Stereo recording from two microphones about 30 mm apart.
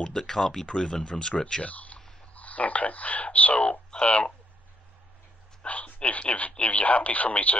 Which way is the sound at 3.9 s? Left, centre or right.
Left.